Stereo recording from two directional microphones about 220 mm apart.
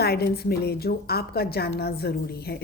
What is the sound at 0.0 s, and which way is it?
A woman's voice, 45° left (ahead or behind).